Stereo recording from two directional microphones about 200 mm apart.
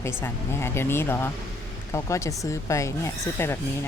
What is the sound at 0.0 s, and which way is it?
Speech, 10° left (ahead or behind).